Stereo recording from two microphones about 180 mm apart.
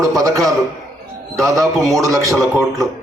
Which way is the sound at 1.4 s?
Centre (ahead or behind).